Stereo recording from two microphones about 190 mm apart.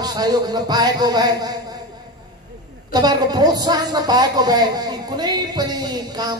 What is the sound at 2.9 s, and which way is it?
A woman's voice, 20° right (ahead or behind).